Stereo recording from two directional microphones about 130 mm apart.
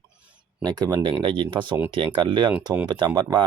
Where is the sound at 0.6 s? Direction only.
30° right (ahead or behind).